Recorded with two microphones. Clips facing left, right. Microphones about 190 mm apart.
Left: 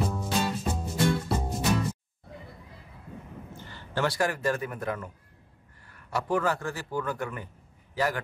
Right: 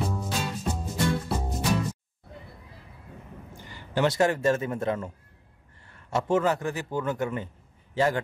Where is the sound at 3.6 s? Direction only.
15° right (ahead or behind).